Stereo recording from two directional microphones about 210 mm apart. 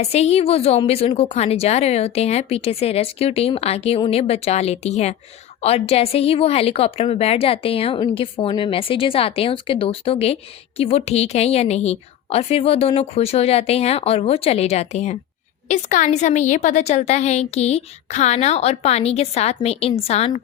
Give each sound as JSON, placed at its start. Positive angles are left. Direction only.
{"t": 0.0, "sound": "a woman's voice", "side_deg": 30}